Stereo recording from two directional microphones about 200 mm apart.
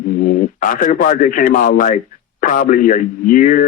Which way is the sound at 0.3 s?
40° left (ahead or behind).